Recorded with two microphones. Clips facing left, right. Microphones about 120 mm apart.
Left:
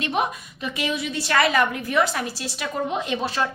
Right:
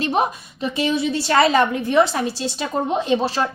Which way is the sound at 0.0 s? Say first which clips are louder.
Right 4 dB; 30° right (ahead or behind).